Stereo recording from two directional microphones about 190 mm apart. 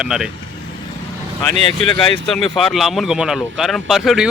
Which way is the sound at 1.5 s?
35° right (ahead or behind).